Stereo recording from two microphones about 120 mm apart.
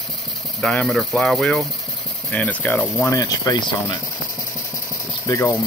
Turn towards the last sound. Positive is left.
turn(degrees=25)  # may be behind; listen again after turning